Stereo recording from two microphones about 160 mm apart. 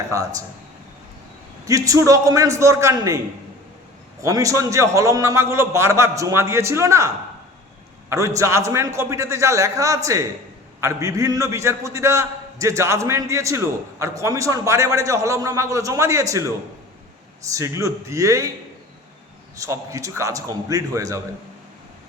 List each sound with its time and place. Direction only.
1.6 s a man's voice: 20° right (ahead or behind)
4.2 s a man's voice: 20° right (ahead or behind)
8.1 s a man's voice: 20° right (ahead or behind)
17.5 s a man's voice: 20° right (ahead or behind)
19.5 s a man's voice: 20° right (ahead or behind)